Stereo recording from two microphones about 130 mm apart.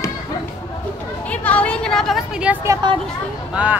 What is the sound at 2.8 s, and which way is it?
Speech, 35° right (ahead or behind).